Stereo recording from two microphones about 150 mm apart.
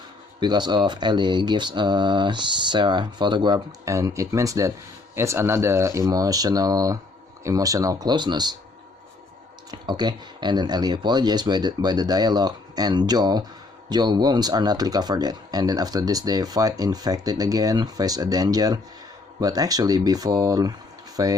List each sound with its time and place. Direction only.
0.3 s speech: 30° right (ahead or behind)
9.7 s speech: 30° right (ahead or behind)